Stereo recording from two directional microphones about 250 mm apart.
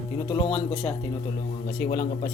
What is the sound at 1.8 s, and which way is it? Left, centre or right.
Speech, left.